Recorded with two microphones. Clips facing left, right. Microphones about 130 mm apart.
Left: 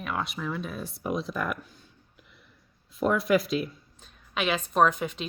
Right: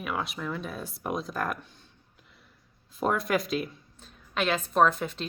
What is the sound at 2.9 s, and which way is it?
A woman's voice, centre (ahead or behind).